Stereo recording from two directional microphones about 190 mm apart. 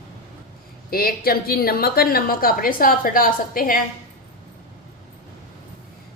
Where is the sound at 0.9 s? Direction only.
50° left (ahead or behind).